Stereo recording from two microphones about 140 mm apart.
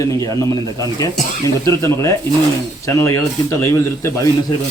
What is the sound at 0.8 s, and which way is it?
Speech, 25° left (ahead or behind).